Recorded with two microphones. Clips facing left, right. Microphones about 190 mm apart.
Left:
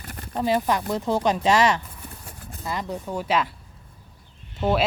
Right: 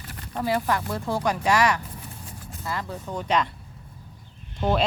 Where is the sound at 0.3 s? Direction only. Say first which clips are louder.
Left 2 dB; 20° left (ahead or behind).